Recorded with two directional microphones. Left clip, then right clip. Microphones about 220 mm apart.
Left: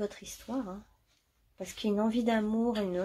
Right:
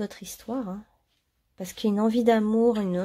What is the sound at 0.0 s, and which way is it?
Speech, 45° right (ahead or behind).